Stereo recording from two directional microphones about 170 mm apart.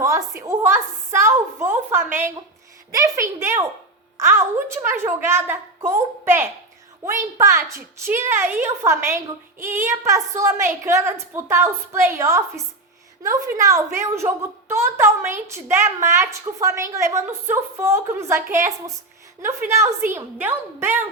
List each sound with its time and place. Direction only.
0.0 s a woman's voice: 15° right (ahead or behind)